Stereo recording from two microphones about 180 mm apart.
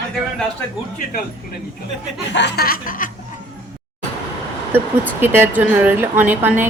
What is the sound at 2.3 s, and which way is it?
Music, 75° left (ahead or behind).